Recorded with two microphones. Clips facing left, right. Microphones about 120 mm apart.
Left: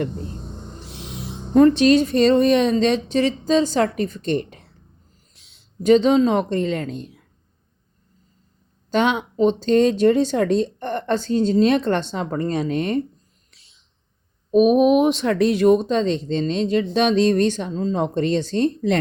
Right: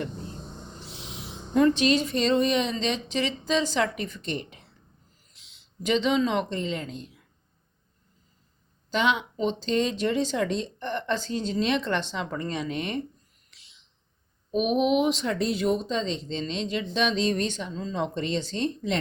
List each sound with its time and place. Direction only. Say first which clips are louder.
1.5 s speech: left 8 dB; 45° left (ahead or behind)
5.8 s speech: left 9 dB; 45° left (ahead or behind)
8.9 s speech: left 5 dB; 50° left (ahead or behind)
14.5 s speech: left 9 dB; 45° left (ahead or behind)
15.2 s speech: left 9 dB; 70° left (ahead or behind); by 18.9 s 50° left (ahead or behind)